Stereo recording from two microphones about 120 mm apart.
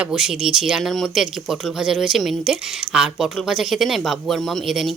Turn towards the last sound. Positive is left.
turn(degrees=0)  # may be behind; listen again after turning